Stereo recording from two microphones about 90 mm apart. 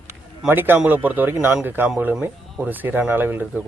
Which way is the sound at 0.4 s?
25° right (ahead or behind).